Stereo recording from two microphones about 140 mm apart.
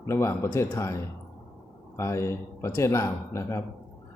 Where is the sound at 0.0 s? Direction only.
20° left (ahead or behind).